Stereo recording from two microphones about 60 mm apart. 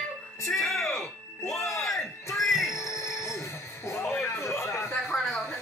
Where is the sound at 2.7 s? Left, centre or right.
Left.